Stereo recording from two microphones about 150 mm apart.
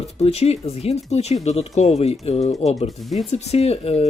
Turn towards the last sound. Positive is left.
turn(degrees=40)  # may be behind; listen again after turning